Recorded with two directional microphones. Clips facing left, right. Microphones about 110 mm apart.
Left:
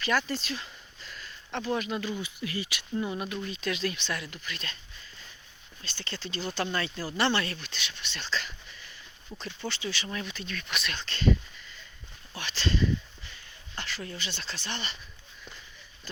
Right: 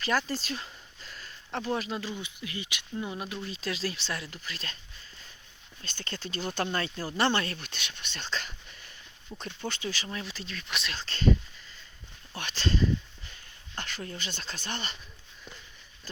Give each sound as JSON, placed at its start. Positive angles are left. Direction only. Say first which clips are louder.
{"t": 0.0, "sound": "a sound", "louder": "left 1 dB", "side_deg": -40}
{"t": 1.5, "sound": "speech", "louder": "left 1 dB", "side_deg": -35}
{"t": 3.4, "sound": "speech", "louder": "left 1 dB", "side_deg": -30}
{"t": 5.8, "sound": "speech", "louder": "even", "side_deg": -45}
{"t": 7.7, "sound": "speech", "louder": "left 2 dB", "side_deg": -50}
{"t": 10.1, "sound": "speech", "louder": "left 2 dB", "side_deg": -30}
{"t": 12.4, "sound": "a sound", "louder": "even", "side_deg": -45}
{"t": 14.2, "sound": "speech", "louder": "left 1 dB", "side_deg": -45}